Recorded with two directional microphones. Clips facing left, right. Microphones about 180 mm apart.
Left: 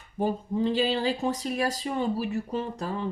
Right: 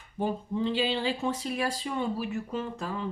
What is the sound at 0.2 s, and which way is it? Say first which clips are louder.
Speech: left 3 dB; 40° left (ahead or behind).